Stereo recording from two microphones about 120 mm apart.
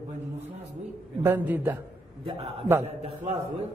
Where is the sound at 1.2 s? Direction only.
15° right (ahead or behind).